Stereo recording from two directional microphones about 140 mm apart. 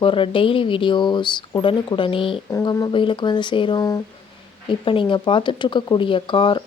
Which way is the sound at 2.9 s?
35° left (ahead or behind).